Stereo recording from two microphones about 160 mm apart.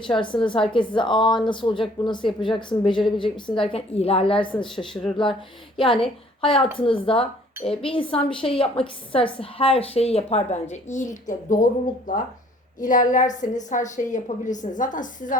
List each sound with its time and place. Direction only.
0.1 s a woman's voice: 30° left (ahead or behind); by 11.5 s 50° left (ahead or behind)
12.8 s a woman's voice: 55° left (ahead or behind)